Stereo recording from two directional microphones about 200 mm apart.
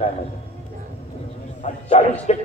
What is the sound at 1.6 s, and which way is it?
Speech, 35° left (ahead or behind).